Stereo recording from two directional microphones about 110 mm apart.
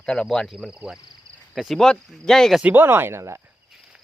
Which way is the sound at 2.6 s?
20° right (ahead or behind).